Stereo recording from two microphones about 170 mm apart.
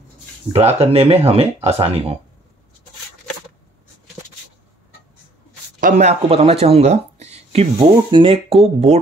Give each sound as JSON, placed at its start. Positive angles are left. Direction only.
{"t": 0.5, "sound": "speech", "side_deg": -35}
{"t": 5.8, "sound": "speech", "side_deg": -45}